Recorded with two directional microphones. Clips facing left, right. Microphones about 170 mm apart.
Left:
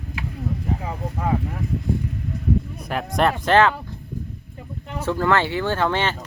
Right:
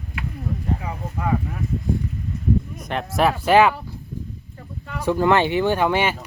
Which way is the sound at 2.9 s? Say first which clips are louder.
Even; centre (ahead or behind).